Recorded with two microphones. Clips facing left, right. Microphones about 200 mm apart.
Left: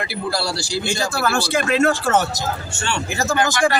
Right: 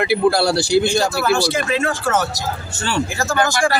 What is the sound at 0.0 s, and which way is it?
A man's voice, 60° right (ahead or behind).